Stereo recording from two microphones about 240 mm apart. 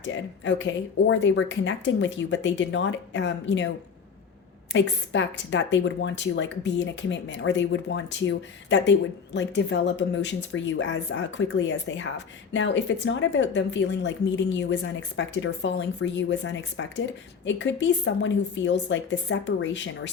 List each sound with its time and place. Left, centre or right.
0.0 s a woman's voice: left
4.7 s a woman's voice: left